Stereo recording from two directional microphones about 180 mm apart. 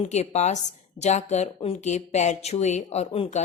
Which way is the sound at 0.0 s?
40° left (ahead or behind).